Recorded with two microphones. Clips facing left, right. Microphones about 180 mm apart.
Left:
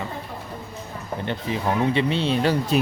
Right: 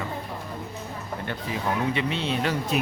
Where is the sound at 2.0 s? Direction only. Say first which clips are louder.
Left 5 dB; 30° left (ahead or behind).